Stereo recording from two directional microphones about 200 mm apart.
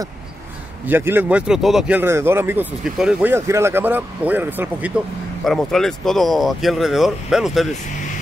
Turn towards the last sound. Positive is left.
turn(degrees=0)  # may be behind; listen again after turning